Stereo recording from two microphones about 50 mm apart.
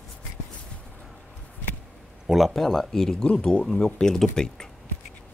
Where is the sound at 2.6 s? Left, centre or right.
Centre.